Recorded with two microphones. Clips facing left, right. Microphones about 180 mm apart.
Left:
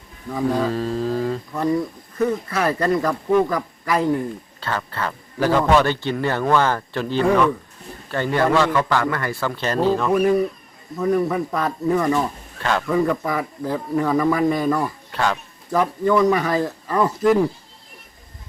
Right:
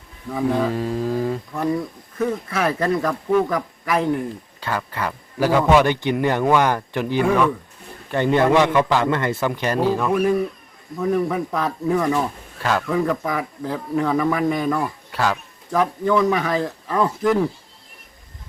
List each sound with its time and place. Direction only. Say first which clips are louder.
0.3 s a man's voice: even; centre (ahead or behind)
1.5 s speech: left 4 dB; centre (ahead or behind)
4.6 s a man's voice: right 1 dB; 10° right (ahead or behind)
10.9 s speech: left 1 dB; centre (ahead or behind)